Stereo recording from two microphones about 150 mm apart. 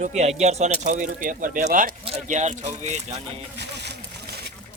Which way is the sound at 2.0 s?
45° right (ahead or behind).